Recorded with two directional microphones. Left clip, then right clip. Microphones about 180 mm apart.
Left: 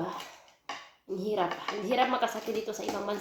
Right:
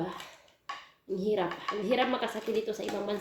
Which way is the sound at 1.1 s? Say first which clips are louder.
Even; 10° right (ahead or behind).